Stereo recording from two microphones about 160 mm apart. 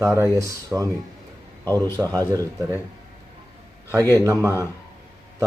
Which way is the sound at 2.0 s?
15° right (ahead or behind).